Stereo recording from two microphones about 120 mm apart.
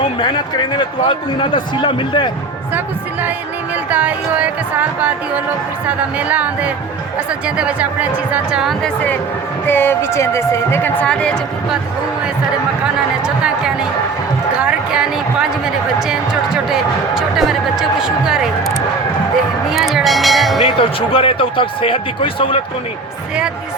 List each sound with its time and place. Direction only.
0.0 s a man's voice: 40° left (ahead or behind)
2.7 s music: 15° right (ahead or behind)
3.8 s speech: 15° right (ahead or behind)
8.8 s speech: 10° left (ahead or behind)
13.2 s speech: 5° right (ahead or behind)
19.7 s speech: centre (ahead or behind)
20.7 s speech: 50° left (ahead or behind)